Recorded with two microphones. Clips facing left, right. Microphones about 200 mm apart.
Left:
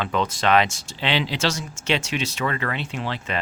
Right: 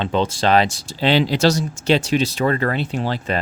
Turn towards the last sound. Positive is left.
turn(degrees=-40)  # may be behind; listen again after turning